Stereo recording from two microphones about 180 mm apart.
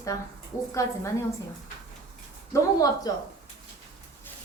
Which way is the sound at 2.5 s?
20° left (ahead or behind).